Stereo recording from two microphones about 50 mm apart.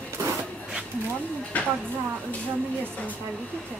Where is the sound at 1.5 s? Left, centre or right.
Left.